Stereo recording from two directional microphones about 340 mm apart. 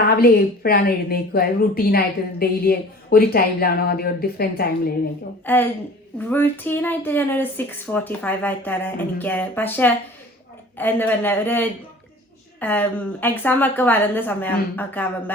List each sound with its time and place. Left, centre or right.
0.2 s speech: left
5.5 s speech: centre